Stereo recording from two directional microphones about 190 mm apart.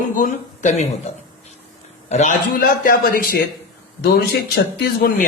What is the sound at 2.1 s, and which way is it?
A man's voice, 40° left (ahead or behind).